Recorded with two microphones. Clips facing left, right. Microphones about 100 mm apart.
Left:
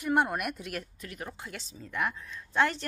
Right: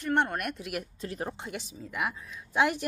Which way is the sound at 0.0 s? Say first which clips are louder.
Even; 5° left (ahead or behind).